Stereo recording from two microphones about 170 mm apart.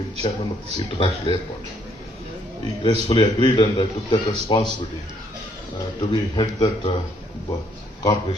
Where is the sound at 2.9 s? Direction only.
25° left (ahead or behind).